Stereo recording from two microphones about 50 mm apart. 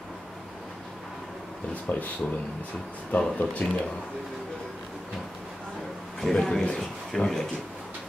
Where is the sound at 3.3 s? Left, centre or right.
Left.